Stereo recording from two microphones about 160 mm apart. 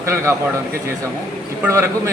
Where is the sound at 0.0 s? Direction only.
15° right (ahead or behind).